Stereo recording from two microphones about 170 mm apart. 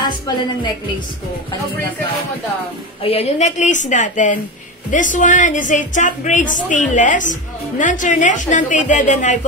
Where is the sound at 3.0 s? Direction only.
35° left (ahead or behind).